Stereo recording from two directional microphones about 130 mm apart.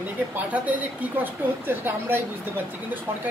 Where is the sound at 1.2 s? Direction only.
15° right (ahead or behind).